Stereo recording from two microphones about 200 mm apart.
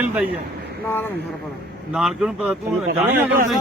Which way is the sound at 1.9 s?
Centre (ahead or behind).